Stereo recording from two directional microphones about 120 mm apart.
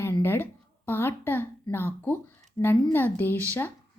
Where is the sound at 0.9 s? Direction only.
20° left (ahead or behind).